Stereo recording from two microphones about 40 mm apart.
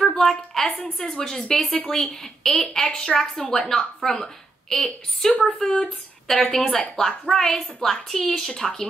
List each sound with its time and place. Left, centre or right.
0.1 s a woman's voice: centre
2.8 s a woman's voice: left
5.9 s speech: centre
6.4 s a woman's voice: centre